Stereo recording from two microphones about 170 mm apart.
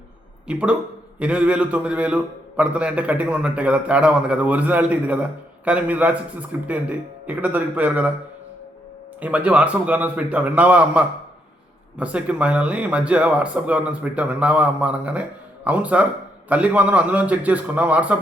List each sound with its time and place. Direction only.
0.4 s speech: 5° right (ahead or behind)
9.2 s speech: 10° right (ahead or behind)